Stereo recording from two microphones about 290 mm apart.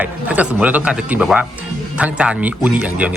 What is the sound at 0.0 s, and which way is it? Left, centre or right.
Speech, centre.